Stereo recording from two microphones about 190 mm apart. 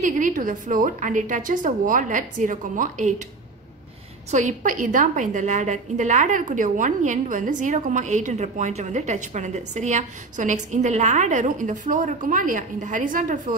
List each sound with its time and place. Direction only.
0.0 s a woman's voice: 45° right (ahead or behind)
4.3 s a woman's voice: 40° right (ahead or behind)